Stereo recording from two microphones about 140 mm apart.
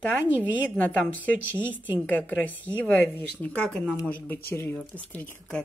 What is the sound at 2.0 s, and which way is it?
Speech, 10° left (ahead or behind).